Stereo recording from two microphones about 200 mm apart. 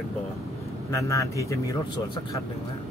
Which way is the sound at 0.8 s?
15° left (ahead or behind).